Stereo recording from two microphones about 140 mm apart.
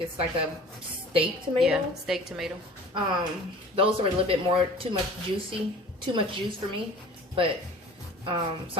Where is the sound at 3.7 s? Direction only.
40° right (ahead or behind).